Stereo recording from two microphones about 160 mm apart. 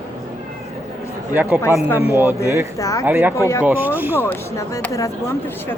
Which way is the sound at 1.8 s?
15° left (ahead or behind).